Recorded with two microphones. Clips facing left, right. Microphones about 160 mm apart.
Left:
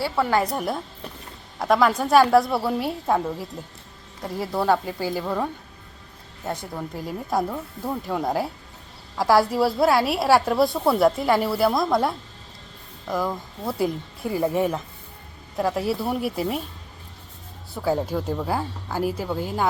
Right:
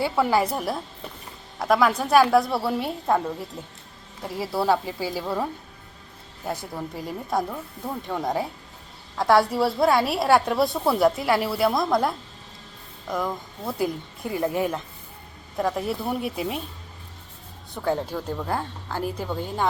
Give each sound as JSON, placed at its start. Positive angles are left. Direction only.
{"t": 0.0, "sound": "a woman's voice", "side_deg": -10}
{"t": 6.7, "sound": "a woman's voice", "side_deg": 0}
{"t": 17.7, "sound": "speech", "side_deg": 10}